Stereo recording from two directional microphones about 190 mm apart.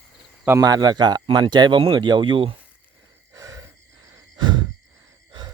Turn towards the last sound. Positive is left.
turn(degrees=-25)  # may be behind; listen again after turning